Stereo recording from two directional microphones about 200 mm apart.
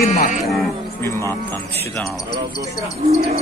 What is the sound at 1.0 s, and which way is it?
Speech, 10° left (ahead or behind).